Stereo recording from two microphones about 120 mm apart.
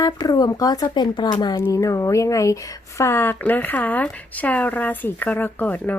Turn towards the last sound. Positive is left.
turn(degrees=15)  # may be behind; listen again after turning